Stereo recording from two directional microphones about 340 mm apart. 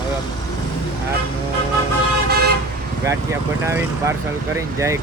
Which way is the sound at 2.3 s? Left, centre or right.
Right.